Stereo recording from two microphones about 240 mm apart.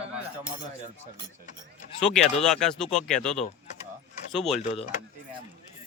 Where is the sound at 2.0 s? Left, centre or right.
Centre.